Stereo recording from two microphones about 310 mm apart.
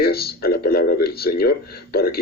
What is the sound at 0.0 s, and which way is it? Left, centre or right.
A man's voice, left.